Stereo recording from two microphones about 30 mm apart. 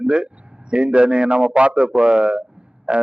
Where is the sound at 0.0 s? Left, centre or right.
Right.